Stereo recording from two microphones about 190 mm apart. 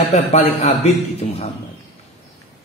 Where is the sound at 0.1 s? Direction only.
35° left (ahead or behind).